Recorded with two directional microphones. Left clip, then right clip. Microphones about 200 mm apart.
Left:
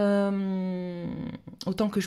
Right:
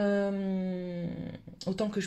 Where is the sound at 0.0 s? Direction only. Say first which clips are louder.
Left 4 dB; 45° left (ahead or behind).